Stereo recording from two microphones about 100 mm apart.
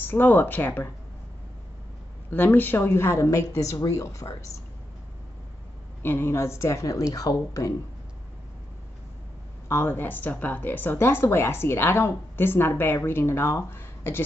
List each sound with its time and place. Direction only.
0.0 s speech: 20° left (ahead or behind)
2.3 s speech: 20° left (ahead or behind)
6.0 s speech: 25° left (ahead or behind)
9.7 s speech: 20° left (ahead or behind)